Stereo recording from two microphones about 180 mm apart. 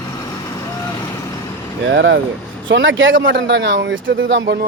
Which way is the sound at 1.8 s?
90° right.